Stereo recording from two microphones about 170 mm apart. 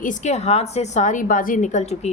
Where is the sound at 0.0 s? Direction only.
45° left (ahead or behind).